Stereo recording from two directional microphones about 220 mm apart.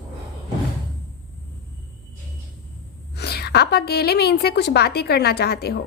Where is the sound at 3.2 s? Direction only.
45° left (ahead or behind).